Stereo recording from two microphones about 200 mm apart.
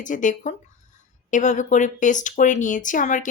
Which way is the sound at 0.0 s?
40° left (ahead or behind).